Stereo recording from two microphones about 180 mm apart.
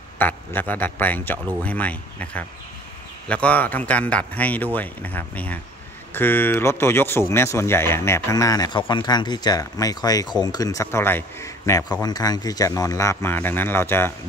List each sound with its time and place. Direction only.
0.2 s speech: 10° left (ahead or behind)